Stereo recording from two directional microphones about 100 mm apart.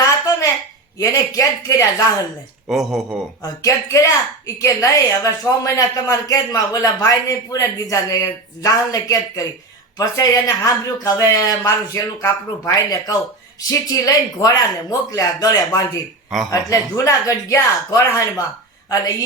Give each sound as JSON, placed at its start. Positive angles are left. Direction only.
{"t": 0.0, "sound": "a sound", "side_deg": 35}
{"t": 0.9, "sound": "a woman's voice", "side_deg": 35}
{"t": 2.6, "sound": "speech", "side_deg": 0}
{"t": 3.4, "sound": "a woman's voice", "side_deg": 35}